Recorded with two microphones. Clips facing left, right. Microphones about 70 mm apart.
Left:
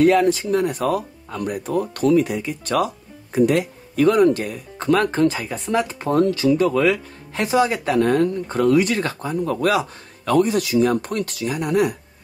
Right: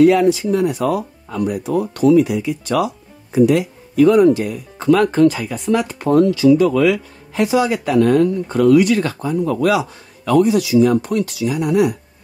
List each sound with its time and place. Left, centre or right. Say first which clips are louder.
0.0 s speech: right 4 dB; left
6.1 s a man's voice: right 5 dB; left